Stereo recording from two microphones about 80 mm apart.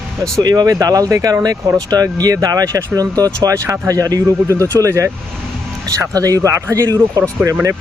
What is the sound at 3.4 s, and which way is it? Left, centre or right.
Speech, right.